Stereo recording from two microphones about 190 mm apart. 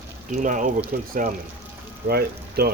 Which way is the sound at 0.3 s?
45° right (ahead or behind).